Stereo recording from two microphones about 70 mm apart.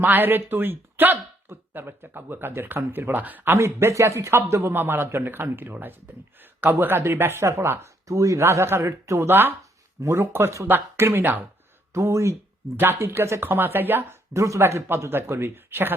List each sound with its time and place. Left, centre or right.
0.0 s speech: right
3.6 s a man's voice: right
8.0 s a man's voice: right
10.0 s a man's voice: right
11.9 s speech: right
12.7 s a man's voice: right
14.3 s a man's voice: right